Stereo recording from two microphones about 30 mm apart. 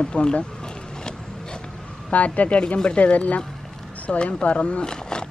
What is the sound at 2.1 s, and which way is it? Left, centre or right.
Speech, left.